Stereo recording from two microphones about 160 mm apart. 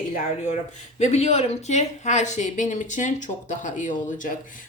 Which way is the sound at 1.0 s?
45° left (ahead or behind).